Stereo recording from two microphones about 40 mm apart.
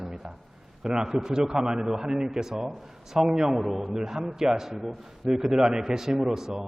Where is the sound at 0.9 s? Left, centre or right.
Centre.